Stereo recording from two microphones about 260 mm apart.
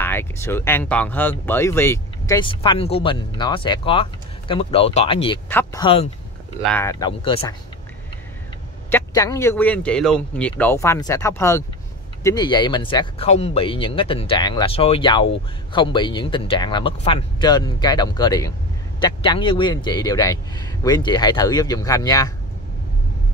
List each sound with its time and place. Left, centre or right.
0.0 s speech: centre
6.6 s speech: centre
8.9 s speech: centre